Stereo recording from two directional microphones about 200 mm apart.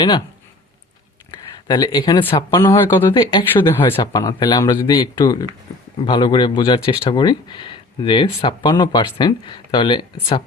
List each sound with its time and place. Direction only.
1.3 s a sound: 20° left (ahead or behind)
2.3 s speech: 20° left (ahead or behind)
3.2 s speech: 20° left (ahead or behind)